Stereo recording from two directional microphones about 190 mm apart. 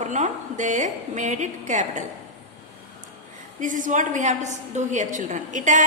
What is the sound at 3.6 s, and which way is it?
A woman's voice, 45° right (ahead or behind).